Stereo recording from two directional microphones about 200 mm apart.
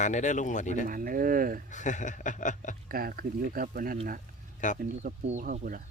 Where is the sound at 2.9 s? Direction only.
45° right (ahead or behind).